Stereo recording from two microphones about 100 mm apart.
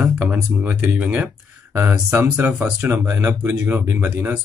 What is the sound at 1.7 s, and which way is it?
Speech, 25° right (ahead or behind).